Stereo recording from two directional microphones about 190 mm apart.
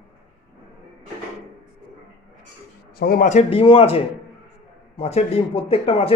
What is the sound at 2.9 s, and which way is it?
Speech, 50° left (ahead or behind).